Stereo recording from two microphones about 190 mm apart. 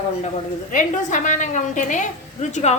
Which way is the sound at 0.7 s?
40° left (ahead or behind).